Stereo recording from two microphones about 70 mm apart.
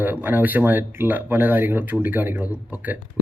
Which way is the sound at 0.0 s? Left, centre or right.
Right.